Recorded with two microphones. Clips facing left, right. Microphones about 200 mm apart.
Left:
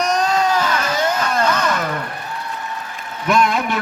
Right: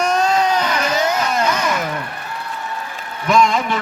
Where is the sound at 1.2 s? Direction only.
10° right (ahead or behind).